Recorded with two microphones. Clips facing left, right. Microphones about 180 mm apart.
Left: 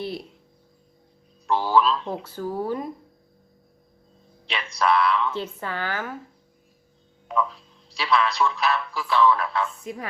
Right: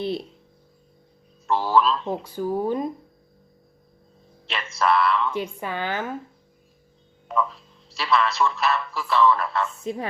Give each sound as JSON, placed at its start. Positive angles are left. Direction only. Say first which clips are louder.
{"t": 1.5, "sound": "speech", "louder": "even", "side_deg": 0}
{"t": 2.2, "sound": "a woman's voice", "louder": "right 3 dB", "side_deg": -15}
{"t": 4.4, "sound": "speech", "louder": "even", "side_deg": 0}
{"t": 5.3, "sound": "a woman's voice", "louder": "right 2 dB", "side_deg": -15}
{"t": 7.3, "sound": "speech", "louder": "even", "side_deg": 0}
{"t": 9.8, "sound": "a woman's voice", "louder": "right 5 dB", "side_deg": -25}